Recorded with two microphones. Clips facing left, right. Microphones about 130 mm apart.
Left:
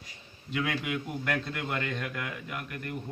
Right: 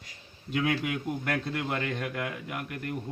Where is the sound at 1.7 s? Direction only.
35° right (ahead or behind).